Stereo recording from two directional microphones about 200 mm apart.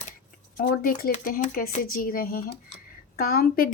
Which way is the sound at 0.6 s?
45° left (ahead or behind).